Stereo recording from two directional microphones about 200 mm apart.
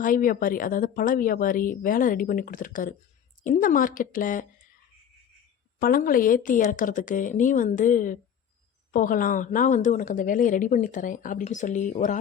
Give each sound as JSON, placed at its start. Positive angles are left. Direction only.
{"t": 0.0, "sound": "speech", "side_deg": 45}
{"t": 5.8, "sound": "a woman's voice", "side_deg": 45}